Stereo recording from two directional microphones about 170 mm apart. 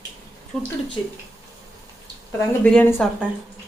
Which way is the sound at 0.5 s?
Centre (ahead or behind).